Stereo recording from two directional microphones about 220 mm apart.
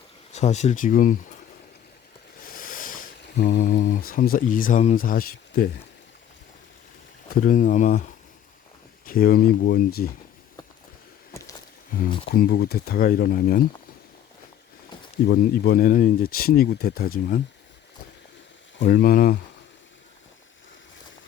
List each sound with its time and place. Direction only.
0.3 s speech: 30° left (ahead or behind)
2.4 s a sound: 40° left (ahead or behind)
7.4 s speech: 35° left (ahead or behind)
9.0 s speech: 40° left (ahead or behind)
11.9 s speech: 40° left (ahead or behind)
15.3 s speech: 40° left (ahead or behind)
18.8 s speech: 40° left (ahead or behind)